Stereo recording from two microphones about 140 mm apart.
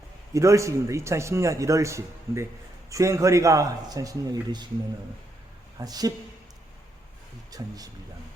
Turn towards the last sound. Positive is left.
turn(degrees=-25)  # may be behind; listen again after turning